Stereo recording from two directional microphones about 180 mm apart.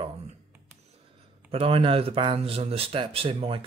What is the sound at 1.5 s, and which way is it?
Speech, 30° right (ahead or behind).